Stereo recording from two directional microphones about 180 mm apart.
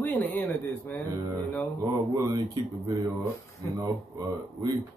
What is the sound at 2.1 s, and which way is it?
Speech, 20° right (ahead or behind).